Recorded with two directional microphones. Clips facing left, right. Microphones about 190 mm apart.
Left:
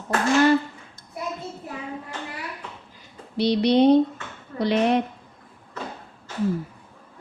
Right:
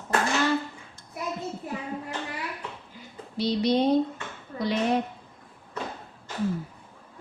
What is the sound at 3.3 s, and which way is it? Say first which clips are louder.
A woman's voice: left 5 dB; 65° left (ahead or behind).